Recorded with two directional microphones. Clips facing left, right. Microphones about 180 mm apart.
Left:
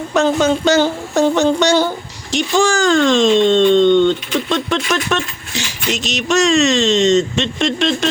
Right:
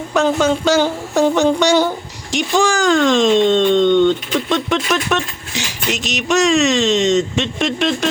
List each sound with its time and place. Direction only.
0.2 s speech: 5° right (ahead or behind)